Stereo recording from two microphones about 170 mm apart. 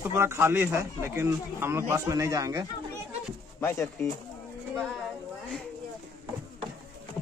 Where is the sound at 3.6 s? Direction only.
15° left (ahead or behind).